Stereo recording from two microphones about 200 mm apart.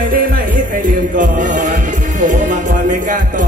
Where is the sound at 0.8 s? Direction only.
40° right (ahead or behind).